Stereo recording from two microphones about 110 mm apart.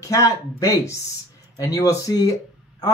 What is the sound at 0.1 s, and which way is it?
Speech, 30° left (ahead or behind).